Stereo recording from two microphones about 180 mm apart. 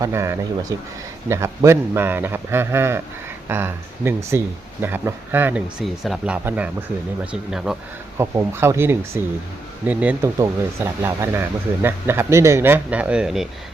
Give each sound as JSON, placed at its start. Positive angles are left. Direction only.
{"t": 0.0, "sound": "speech", "side_deg": -15}
{"t": 8.2, "sound": "speech", "side_deg": -15}